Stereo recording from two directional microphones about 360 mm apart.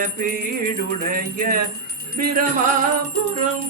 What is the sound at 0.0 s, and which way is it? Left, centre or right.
Jingle bell, right.